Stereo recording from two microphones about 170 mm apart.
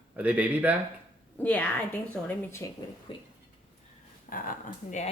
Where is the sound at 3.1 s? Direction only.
30° left (ahead or behind).